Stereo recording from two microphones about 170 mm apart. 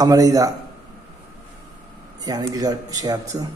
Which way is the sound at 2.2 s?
20° right (ahead or behind).